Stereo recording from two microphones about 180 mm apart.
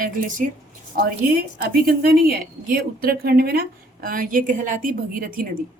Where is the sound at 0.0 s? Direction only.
45° right (ahead or behind).